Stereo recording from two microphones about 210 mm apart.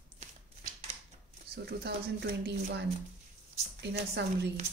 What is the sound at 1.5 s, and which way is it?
A woman's voice, 50° right (ahead or behind).